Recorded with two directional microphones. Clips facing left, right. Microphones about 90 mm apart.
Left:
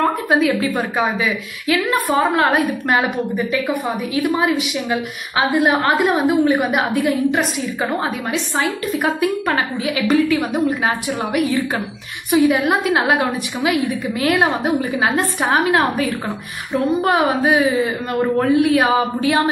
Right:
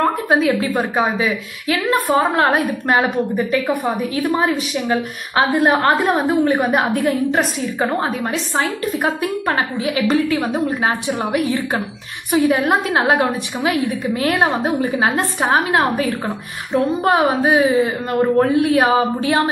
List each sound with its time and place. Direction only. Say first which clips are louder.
0.3 s a woman's voice: even; 30° right (ahead or behind)